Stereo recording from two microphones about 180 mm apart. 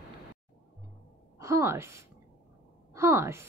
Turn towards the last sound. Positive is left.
turn(degrees=-15)  # may be behind; listen again after turning